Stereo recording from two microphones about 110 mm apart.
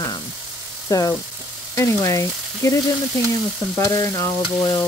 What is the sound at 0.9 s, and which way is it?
Speech, 30° left (ahead or behind).